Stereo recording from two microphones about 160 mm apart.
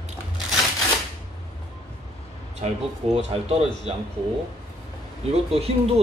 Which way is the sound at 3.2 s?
40° right (ahead or behind).